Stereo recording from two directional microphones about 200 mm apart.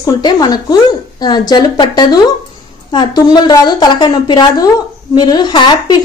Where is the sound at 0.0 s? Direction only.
20° left (ahead or behind).